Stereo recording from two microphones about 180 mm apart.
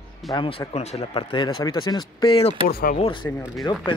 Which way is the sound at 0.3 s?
30° left (ahead or behind).